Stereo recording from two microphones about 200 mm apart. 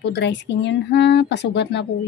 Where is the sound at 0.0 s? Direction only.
60° left (ahead or behind).